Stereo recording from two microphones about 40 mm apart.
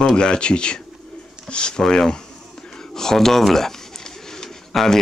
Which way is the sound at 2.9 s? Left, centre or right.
Centre.